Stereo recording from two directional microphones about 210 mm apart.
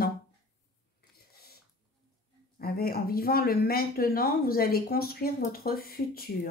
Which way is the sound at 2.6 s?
45° left (ahead or behind).